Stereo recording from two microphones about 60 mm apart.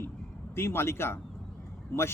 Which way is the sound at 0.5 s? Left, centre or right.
Left.